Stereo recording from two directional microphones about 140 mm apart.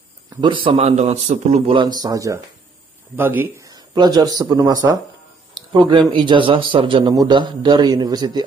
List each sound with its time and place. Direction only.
0.4 s a man's voice: 35° right (ahead or behind)
0.8 s a man's voice: 55° right (ahead or behind)
1.8 s a man's voice: 30° right (ahead or behind)